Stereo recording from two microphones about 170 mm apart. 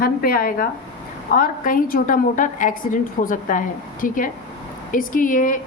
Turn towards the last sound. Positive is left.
turn(degrees=50)  # may be behind; listen again after turning